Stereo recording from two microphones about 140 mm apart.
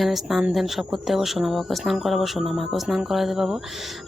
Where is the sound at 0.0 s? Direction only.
Centre (ahead or behind).